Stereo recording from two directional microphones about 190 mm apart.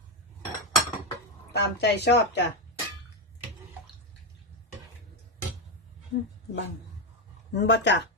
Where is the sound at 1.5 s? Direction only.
60° left (ahead or behind).